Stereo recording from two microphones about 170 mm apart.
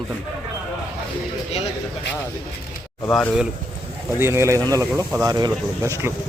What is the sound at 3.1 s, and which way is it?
Speech, centre (ahead or behind).